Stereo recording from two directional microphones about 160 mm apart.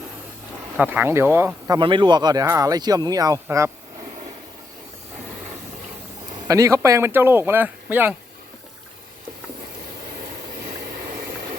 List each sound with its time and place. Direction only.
0.8 s speech: 10° right (ahead or behind)
1.8 s speech: 30° right (ahead or behind)
6.5 s speech: 20° right (ahead or behind)